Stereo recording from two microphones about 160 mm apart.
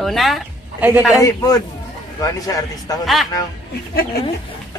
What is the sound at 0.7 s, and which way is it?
Speech, 10° right (ahead or behind).